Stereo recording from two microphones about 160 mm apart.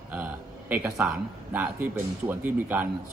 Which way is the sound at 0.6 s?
10° right (ahead or behind).